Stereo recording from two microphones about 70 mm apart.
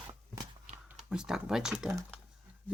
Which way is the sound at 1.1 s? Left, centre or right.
Centre.